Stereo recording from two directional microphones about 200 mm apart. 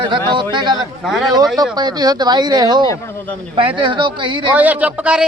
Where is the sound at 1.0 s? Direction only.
Centre (ahead or behind).